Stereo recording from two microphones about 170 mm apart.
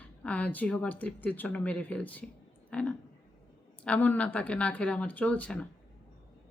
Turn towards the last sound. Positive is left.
turn(degrees=10)  # may be behind; listen again after turning